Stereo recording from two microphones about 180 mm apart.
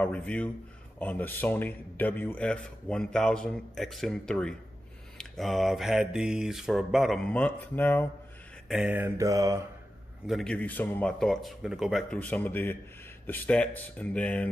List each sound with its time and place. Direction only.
0.0 s a man's voice: 10° left (ahead or behind)
8.6 s mantra: 5° right (ahead or behind)
10.2 s a man's voice: centre (ahead or behind)